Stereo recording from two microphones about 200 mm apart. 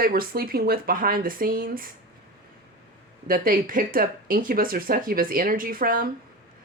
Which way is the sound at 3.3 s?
45° right (ahead or behind).